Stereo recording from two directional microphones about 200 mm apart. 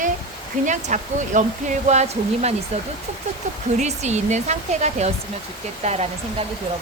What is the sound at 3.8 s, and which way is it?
Speech, 35° right (ahead or behind).